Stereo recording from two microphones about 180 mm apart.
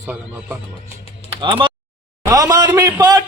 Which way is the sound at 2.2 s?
20° right (ahead or behind).